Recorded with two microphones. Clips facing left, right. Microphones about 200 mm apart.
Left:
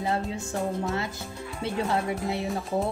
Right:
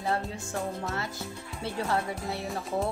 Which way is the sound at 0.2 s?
Centre (ahead or behind).